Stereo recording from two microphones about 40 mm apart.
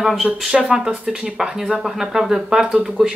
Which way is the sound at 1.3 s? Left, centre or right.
Centre.